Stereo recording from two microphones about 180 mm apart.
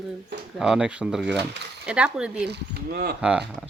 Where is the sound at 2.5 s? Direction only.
60° right (ahead or behind).